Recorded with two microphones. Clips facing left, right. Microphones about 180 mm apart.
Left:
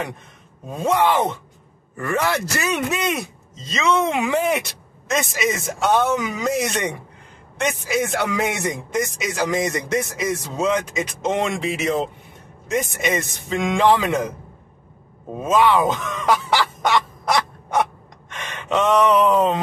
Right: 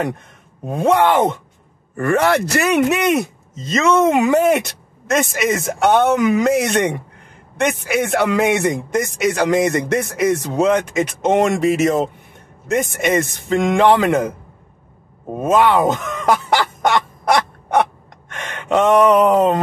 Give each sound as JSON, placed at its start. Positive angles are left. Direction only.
{"t": 0.7, "sound": "a man's voice", "side_deg": -60}
{"t": 12.6, "sound": "a man's voice", "side_deg": -60}
{"t": 15.3, "sound": "a sound", "side_deg": -55}